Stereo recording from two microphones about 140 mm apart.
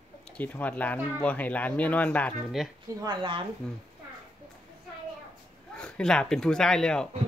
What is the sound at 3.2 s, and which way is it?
Speech, 40° right (ahead or behind).